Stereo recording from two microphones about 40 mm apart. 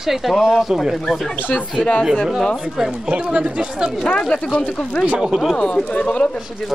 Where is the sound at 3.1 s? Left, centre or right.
Right.